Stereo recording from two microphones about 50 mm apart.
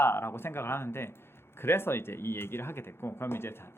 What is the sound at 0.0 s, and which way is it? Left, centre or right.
Speech, left.